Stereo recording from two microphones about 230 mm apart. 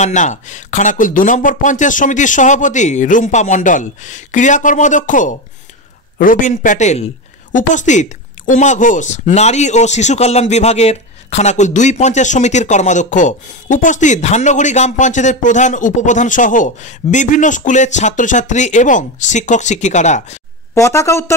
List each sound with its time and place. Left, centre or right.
0.0 s speech: left
20.7 s a woman's voice: centre